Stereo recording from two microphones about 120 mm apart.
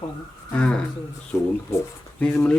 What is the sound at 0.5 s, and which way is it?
Speech, 10° left (ahead or behind).